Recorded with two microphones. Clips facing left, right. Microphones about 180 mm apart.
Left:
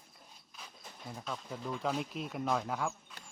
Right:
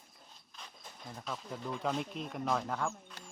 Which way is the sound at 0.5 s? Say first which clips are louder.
Even; 5° left (ahead or behind).